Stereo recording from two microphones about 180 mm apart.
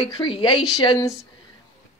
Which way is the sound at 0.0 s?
25° left (ahead or behind).